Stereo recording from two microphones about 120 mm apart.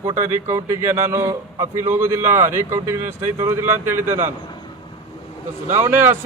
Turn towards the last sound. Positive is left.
turn(degrees=-20)  # may be behind; listen again after turning